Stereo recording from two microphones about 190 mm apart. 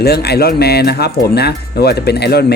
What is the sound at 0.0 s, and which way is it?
Speech, 60° left (ahead or behind).